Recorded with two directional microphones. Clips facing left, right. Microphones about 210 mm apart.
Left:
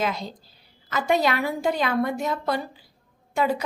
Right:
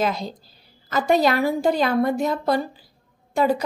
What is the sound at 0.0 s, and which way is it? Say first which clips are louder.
A woman's voice: right 3 dB; 40° right (ahead or behind).